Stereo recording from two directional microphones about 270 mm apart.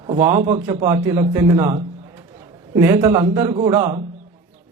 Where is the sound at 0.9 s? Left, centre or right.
Centre.